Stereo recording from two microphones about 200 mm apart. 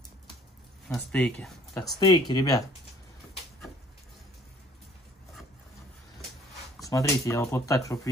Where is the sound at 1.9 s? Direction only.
20° left (ahead or behind).